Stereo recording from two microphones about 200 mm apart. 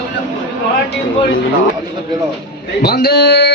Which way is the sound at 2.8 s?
50° left (ahead or behind).